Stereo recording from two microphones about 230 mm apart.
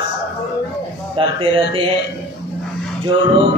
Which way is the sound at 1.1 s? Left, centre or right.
Right.